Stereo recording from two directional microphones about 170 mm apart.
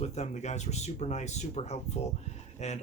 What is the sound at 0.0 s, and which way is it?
Speech, 40° left (ahead or behind).